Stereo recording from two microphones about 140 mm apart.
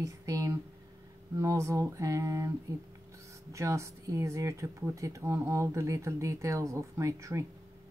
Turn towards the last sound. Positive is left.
turn(degrees=-20)  # may be behind; listen again after turning